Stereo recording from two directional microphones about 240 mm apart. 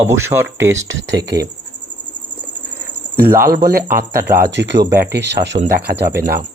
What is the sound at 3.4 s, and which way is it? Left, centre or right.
Speech, right.